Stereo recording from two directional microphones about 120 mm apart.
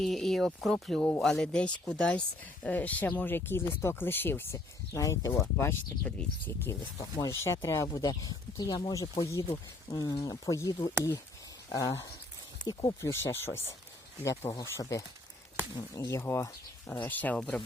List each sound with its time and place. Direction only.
0.0 s speech: centre (ahead or behind); by 5.7 s 20° left (ahead or behind)
6.1 s speech: 10° left (ahead or behind)
6.7 s speech: 30° left (ahead or behind)
12.6 s speech: 40° left (ahead or behind)
13.0 s speech: 20° left (ahead or behind)